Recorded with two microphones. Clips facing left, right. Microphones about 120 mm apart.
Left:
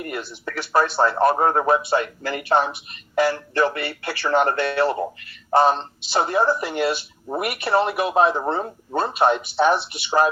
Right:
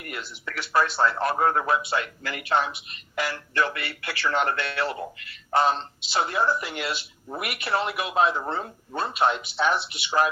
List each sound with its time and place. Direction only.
0.0 s speech: 35° left (ahead or behind)
8.4 s speech: 30° left (ahead or behind)